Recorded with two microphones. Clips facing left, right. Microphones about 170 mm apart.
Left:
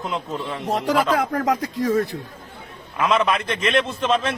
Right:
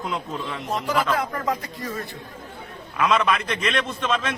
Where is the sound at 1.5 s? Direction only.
90° left.